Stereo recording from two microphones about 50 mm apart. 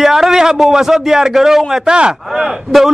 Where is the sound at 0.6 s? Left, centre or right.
Centre.